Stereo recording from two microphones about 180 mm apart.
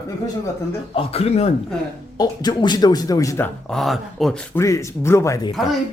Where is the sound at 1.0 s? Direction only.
35° left (ahead or behind).